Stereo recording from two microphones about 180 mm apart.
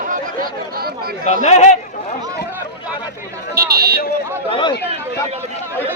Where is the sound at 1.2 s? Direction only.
40° left (ahead or behind).